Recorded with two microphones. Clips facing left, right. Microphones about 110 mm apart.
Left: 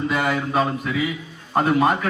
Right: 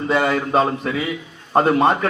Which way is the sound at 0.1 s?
30° right (ahead or behind).